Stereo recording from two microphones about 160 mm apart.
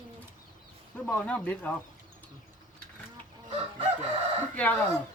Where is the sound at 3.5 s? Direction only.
40° right (ahead or behind).